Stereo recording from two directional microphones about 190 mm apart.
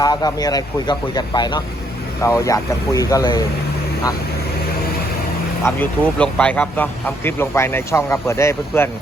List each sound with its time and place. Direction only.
0.0 s speech: 20° left (ahead or behind)
5.6 s speech: 10° left (ahead or behind)